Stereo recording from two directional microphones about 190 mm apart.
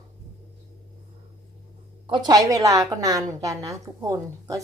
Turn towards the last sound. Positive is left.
turn(degrees=-15)  # may be behind; listen again after turning